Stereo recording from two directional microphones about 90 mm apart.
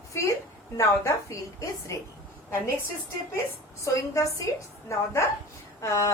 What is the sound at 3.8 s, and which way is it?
Speech, 35° left (ahead or behind).